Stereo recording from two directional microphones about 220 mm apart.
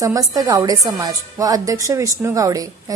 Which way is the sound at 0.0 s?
15° right (ahead or behind).